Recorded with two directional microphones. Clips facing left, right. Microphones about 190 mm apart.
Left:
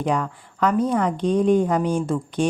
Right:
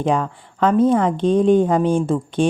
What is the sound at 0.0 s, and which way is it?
A woman's voice, 25° right (ahead or behind).